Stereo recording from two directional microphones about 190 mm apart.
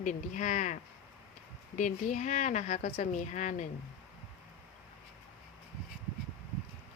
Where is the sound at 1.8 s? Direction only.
40° left (ahead or behind).